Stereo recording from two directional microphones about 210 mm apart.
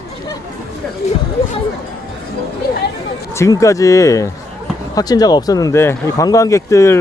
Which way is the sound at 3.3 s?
15° left (ahead or behind).